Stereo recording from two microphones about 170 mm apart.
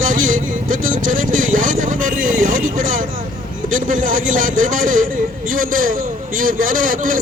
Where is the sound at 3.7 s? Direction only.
50° right (ahead or behind).